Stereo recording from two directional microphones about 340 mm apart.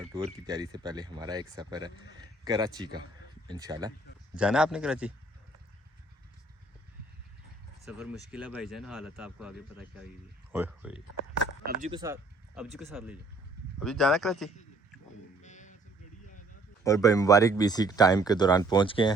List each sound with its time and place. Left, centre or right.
0.3 s speech: centre
7.9 s speech: centre
11.6 s speech: centre
15.4 s music: left
16.8 s speech: centre